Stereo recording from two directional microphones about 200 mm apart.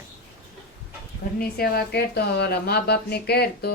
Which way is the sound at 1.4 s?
50° left (ahead or behind).